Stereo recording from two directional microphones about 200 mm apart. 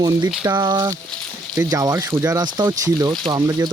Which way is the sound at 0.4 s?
20° right (ahead or behind).